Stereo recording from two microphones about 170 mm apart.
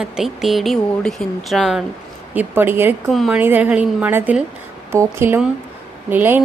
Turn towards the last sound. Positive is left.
turn(degrees=-10)  # may be behind; listen again after turning